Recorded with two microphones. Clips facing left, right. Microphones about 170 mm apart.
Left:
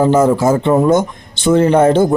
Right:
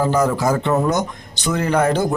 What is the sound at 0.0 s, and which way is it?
Speech, 25° left (ahead or behind).